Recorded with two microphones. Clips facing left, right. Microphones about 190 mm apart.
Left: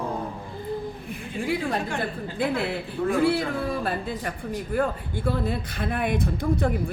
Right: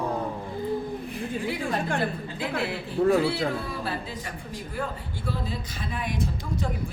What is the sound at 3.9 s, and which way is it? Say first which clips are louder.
A woman's voice: left 4 dB; 55° left (ahead or behind).